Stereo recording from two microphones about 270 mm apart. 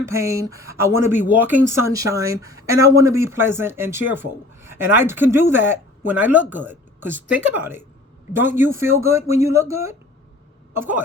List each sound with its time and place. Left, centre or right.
0.1 s speech: centre